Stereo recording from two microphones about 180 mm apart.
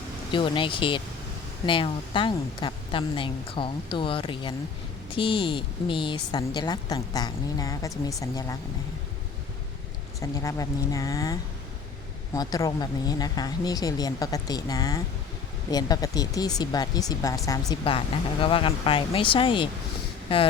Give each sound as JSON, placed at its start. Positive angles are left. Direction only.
{"t": 0.3, "sound": "a woman's voice", "side_deg": 25}
{"t": 10.2, "sound": "a woman's voice", "side_deg": 20}
{"t": 17.8, "sound": "a woman's voice", "side_deg": 30}